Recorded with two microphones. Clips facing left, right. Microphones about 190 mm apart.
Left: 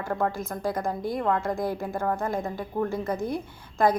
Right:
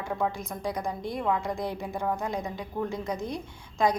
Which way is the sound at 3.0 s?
55° left (ahead or behind).